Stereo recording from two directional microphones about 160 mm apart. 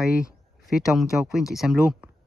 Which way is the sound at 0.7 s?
Centre (ahead or behind).